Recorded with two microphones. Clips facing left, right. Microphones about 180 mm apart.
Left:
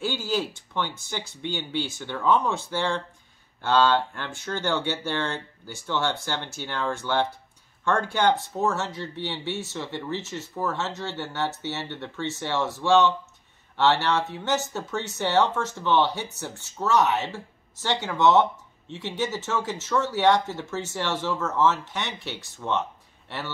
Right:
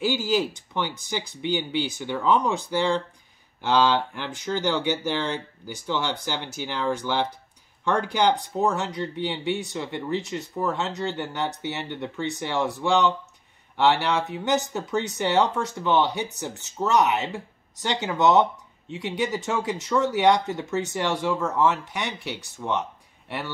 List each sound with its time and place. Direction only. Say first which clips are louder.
0.0 s speech: right 4 dB; 10° right (ahead or behind)